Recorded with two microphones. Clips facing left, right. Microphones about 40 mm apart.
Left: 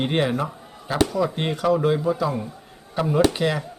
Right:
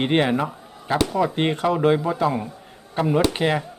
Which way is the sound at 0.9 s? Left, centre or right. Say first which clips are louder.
Right 1 dB; right.